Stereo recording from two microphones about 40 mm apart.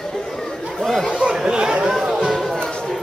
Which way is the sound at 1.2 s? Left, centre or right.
Centre.